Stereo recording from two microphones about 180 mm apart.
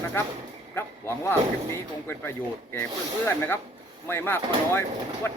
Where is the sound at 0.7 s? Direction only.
15° left (ahead or behind).